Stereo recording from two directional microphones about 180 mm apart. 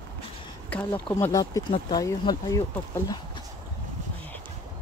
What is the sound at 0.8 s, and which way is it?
Speech, 25° left (ahead or behind).